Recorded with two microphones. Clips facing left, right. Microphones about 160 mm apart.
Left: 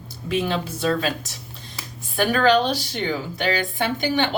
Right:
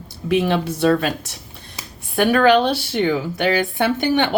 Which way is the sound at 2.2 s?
60° right (ahead or behind).